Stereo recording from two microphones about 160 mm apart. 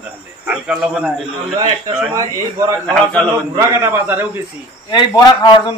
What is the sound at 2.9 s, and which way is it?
Speech, 5° left (ahead or behind).